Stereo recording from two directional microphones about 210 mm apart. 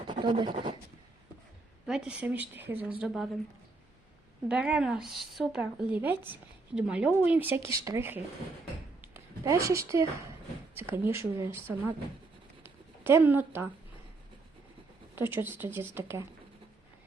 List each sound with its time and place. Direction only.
0.1 s roaring cats: 20° right (ahead or behind)
1.9 s speech: 5° right (ahead or behind)
4.4 s speech: 5° right (ahead or behind)
9.0 s a sound: 10° right (ahead or behind)
10.8 s speech: 10° right (ahead or behind)
12.6 s a sound: 10° right (ahead or behind)
15.1 s speech: 10° right (ahead or behind)